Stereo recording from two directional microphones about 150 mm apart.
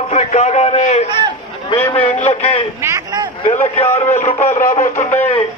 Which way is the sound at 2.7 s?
20° right (ahead or behind).